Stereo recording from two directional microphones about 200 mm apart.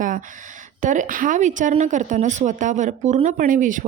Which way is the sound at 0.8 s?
40° right (ahead or behind).